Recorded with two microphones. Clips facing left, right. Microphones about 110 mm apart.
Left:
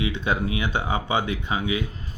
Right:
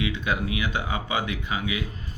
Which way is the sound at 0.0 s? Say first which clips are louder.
Left 2 dB; 30° left (ahead or behind).